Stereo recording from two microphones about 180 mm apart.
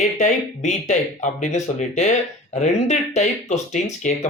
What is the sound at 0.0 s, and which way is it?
Speech, 40° left (ahead or behind).